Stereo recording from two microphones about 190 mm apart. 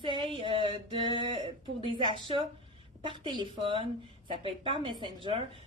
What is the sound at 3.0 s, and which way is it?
A woman's voice, 25° right (ahead or behind).